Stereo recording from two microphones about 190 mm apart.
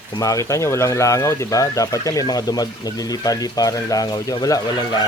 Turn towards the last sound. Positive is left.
turn(degrees=20)  # may be behind; listen again after turning